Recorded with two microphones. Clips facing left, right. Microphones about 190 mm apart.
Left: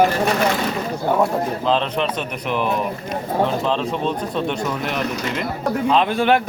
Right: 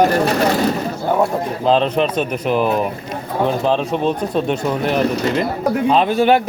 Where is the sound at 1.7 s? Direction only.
40° right (ahead or behind).